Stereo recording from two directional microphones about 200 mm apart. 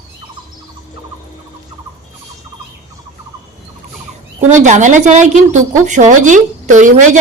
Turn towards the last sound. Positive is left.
turn(degrees=-40)  # may be behind; listen again after turning